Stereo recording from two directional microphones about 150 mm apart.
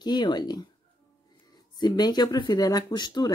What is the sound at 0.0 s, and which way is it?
Speech, 30° left (ahead or behind).